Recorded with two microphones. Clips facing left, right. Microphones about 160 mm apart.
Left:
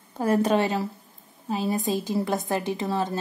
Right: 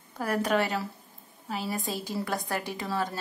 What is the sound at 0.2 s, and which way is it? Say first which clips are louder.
A woman's voice: left 5 dB; 25° left (ahead or behind).